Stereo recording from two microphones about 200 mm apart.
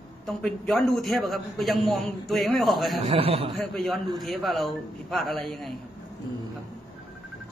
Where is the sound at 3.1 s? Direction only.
30° right (ahead or behind).